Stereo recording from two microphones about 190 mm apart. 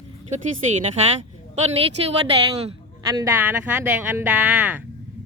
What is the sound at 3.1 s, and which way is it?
Speech, 15° right (ahead or behind).